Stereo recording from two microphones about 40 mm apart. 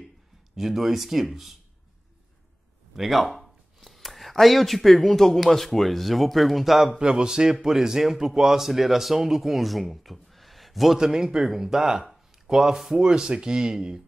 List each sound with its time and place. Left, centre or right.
0.6 s speech: centre
3.0 s speech: centre
7.0 s speech: centre
11.0 s speech: centre